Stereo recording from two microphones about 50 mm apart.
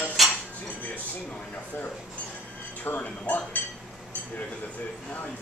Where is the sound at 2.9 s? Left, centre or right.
Left.